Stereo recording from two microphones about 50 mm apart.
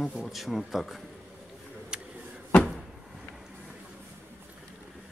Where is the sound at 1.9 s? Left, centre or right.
Centre.